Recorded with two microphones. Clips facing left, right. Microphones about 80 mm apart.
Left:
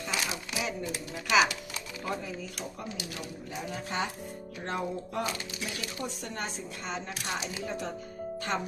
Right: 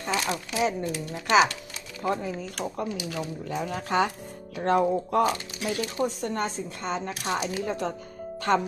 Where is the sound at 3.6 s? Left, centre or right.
Right.